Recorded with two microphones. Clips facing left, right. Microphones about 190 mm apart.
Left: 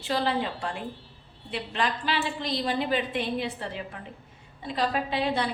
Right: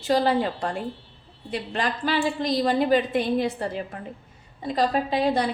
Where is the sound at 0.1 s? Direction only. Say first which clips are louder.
Right 6 dB; 40° right (ahead or behind).